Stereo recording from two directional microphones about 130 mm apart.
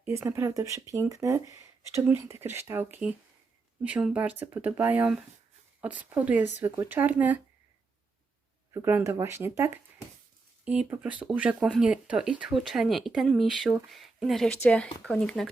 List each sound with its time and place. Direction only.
0.0 s speech: 20° right (ahead or behind)
8.7 s speech: 20° right (ahead or behind)
11.0 s speech: 10° right (ahead or behind)